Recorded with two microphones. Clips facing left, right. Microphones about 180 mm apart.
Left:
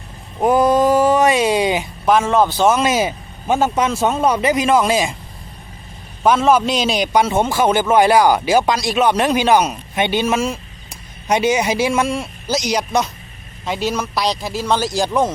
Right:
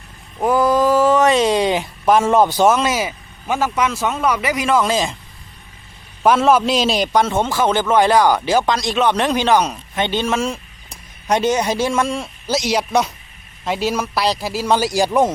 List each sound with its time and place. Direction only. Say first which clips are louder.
0.3 s a sound: left 2 dB; 20° left (ahead or behind)
1.4 s speech: even; 5° left (ahead or behind)
2.4 s speech: right 1 dB; 15° right (ahead or behind)
2.8 s speech: left 3 dB; 30° left (ahead or behind)
6.2 s a man's voice: even; centre (ahead or behind)
7.3 s a man's voice: left 2 dB; 15° left (ahead or behind); by 15.3 s 15° right (ahead or behind)